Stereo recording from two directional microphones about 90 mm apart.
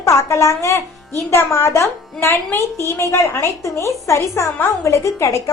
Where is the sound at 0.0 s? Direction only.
35° left (ahead or behind).